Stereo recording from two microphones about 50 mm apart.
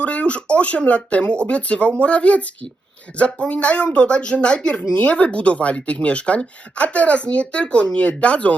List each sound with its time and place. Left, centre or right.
0.0 s speech: left